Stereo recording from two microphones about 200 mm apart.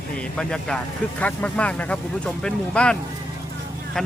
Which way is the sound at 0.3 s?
5° left (ahead or behind).